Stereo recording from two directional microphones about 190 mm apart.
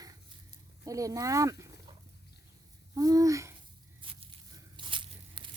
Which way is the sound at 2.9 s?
20° right (ahead or behind).